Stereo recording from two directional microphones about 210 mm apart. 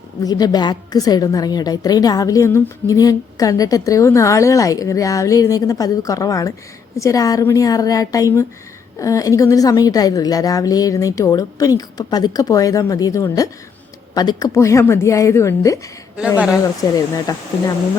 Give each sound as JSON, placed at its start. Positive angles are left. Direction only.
{"t": 0.2, "sound": "a woman's voice", "side_deg": 20}
{"t": 16.8, "sound": "a woman's voice", "side_deg": 15}